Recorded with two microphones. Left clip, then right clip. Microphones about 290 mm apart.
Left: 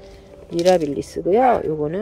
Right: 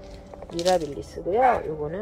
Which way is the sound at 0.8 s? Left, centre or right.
Left.